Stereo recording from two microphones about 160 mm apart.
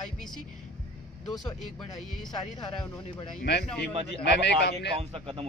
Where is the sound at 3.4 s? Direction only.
90° left.